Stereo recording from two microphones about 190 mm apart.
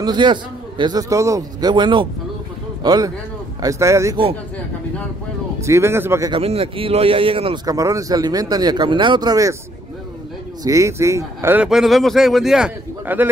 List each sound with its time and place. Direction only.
0.0 s a man's voice: 25° right (ahead or behind)
5.6 s speech: 15° right (ahead or behind)
6.3 s speech: 30° right (ahead or behind)
10.6 s speech: 15° right (ahead or behind)